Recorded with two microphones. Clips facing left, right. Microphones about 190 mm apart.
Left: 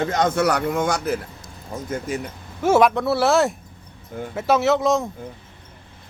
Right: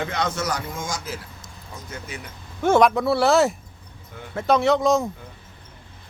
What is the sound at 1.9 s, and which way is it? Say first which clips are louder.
Speech: left 10 dB; 45° left (ahead or behind).